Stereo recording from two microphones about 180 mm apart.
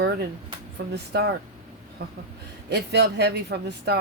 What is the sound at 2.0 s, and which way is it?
Speech, 60° right (ahead or behind).